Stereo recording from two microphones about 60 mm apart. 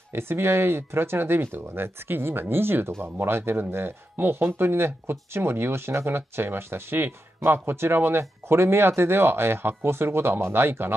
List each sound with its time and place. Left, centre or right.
0.1 s speech: right